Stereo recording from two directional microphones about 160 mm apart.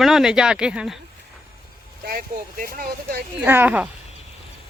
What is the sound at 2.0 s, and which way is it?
Speech, 70° right (ahead or behind).